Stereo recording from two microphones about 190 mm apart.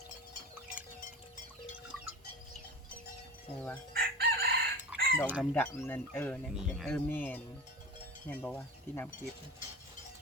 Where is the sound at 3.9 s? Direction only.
55° right (ahead or behind).